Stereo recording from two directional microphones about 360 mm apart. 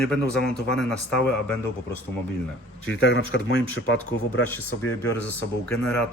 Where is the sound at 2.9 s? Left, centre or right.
Left.